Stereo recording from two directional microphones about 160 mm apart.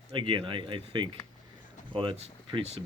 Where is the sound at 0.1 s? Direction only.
30° right (ahead or behind).